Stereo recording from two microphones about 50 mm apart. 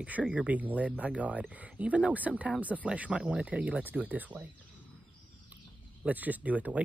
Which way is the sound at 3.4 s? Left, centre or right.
Right.